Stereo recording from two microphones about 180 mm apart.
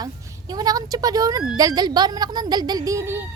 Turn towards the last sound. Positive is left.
turn(degrees=-15)  # may be behind; listen again after turning